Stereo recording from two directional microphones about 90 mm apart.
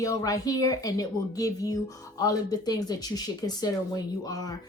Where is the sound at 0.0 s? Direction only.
40° left (ahead or behind).